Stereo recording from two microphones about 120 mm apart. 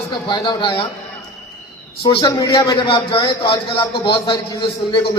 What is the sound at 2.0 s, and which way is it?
A man's voice, 40° left (ahead or behind).